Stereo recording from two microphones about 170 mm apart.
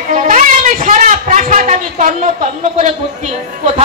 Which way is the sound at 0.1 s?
45° right (ahead or behind).